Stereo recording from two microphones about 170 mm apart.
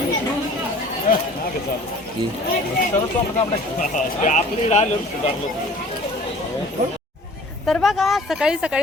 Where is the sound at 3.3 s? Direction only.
45° left (ahead or behind).